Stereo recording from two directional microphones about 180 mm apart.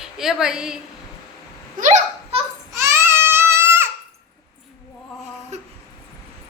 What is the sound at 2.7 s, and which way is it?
Baby cry, 15° right (ahead or behind).